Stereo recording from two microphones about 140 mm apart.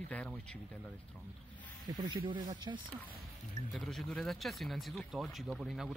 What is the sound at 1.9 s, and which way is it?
Speech, 35° right (ahead or behind).